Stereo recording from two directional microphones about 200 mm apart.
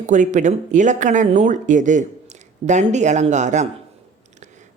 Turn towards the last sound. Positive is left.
turn(degrees=-35)  # may be behind; listen again after turning